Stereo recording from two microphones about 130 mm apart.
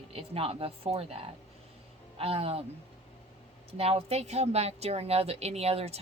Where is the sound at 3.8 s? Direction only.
50° right (ahead or behind).